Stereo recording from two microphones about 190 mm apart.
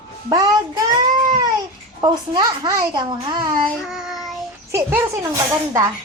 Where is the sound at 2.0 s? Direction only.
20° right (ahead or behind).